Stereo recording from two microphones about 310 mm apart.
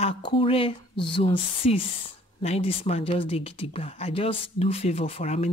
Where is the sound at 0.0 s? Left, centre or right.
Centre.